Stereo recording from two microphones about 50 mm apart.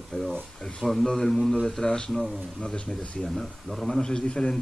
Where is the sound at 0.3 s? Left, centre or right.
Centre.